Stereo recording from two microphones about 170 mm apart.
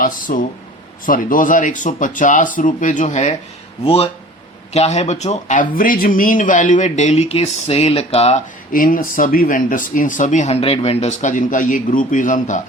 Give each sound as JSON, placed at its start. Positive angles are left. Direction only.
{"t": 0.0, "sound": "a man's voice", "side_deg": 55}
{"t": 8.7, "sound": "speech", "side_deg": 55}